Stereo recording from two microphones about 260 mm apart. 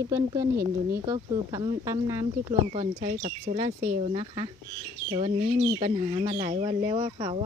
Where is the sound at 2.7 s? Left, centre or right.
Right.